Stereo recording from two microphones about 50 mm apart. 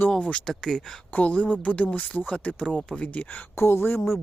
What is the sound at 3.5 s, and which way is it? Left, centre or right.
Speech, left.